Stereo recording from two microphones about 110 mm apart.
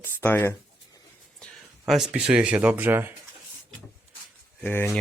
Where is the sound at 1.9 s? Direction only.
5° right (ahead or behind); by 3.1 s 20° right (ahead or behind).